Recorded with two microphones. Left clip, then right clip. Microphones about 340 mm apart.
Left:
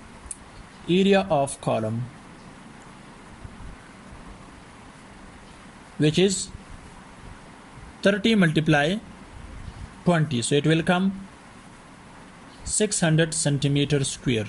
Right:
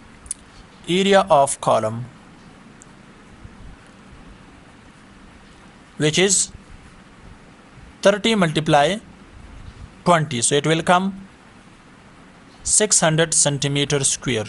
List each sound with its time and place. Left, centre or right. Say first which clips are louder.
0.8 s speech: right 5 dB; centre
1.3 s speech: right 8 dB; right
5.9 s speech: right 4 dB; centre
8.0 s a man's voice: right 5 dB; centre
10.1 s a man's voice: right 5 dB; centre
12.7 s speech: right 6 dB; centre